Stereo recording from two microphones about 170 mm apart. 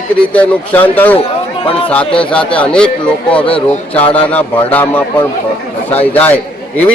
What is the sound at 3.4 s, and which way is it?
Speech, 30° left (ahead or behind).